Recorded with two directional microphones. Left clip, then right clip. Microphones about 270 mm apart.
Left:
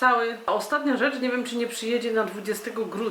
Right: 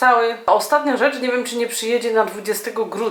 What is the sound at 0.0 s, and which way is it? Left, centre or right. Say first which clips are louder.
Speech: right 7 dB; centre.